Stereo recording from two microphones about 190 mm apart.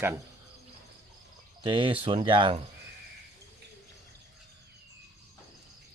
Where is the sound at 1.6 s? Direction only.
25° right (ahead or behind).